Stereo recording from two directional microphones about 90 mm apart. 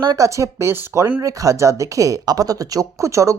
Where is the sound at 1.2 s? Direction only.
40° right (ahead or behind).